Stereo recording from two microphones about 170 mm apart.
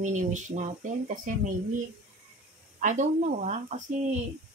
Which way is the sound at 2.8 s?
45° right (ahead or behind).